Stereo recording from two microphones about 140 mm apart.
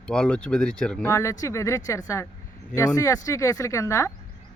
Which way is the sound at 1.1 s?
20° left (ahead or behind).